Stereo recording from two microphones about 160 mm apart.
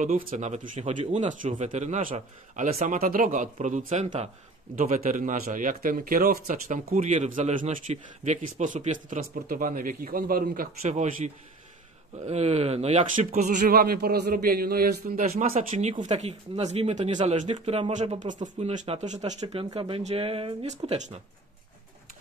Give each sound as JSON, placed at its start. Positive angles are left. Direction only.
{"t": 0.0, "sound": "speech", "side_deg": -50}
{"t": 9.3, "sound": "speech", "side_deg": -60}
{"t": 10.8, "sound": "speech", "side_deg": -45}
{"t": 13.7, "sound": "a man's voice", "side_deg": -75}
{"t": 15.4, "sound": "speech", "side_deg": -55}